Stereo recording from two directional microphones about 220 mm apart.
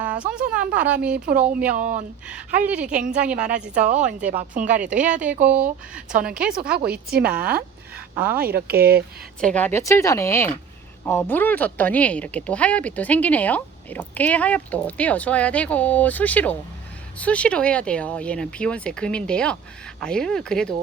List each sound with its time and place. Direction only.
0.3 s speech: 5° right (ahead or behind)
1.7 s speech: 35° right (ahead or behind)
2.3 s speech: 5° right (ahead or behind)
4.3 s speech: 30° right (ahead or behind)
4.8 s speech: 5° right (ahead or behind)
6.7 s a woman's voice: 45° right (ahead or behind)
9.4 s speech: 5° left (ahead or behind)